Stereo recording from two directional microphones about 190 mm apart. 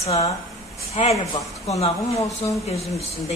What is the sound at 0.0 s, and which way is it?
Speech, 30° left (ahead or behind).